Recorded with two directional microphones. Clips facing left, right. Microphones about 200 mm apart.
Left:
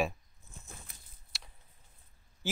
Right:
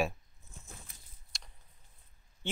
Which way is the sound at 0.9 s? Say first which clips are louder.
Left 1 dB; 60° left (ahead or behind).